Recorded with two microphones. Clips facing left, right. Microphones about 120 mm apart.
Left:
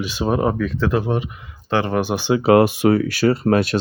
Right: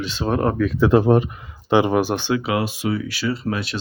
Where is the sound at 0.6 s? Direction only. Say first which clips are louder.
Right 3 dB; 10° right (ahead or behind).